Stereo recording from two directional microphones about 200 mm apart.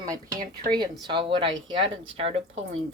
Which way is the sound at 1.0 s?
25° right (ahead or behind).